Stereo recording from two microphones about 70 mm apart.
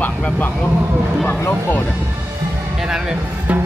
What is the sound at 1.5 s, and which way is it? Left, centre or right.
Speech, left.